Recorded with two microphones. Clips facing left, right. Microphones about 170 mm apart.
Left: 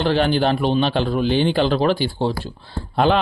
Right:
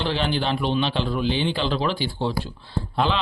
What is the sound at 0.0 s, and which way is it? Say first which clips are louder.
A man's voice: left 7 dB; 50° left (ahead or behind).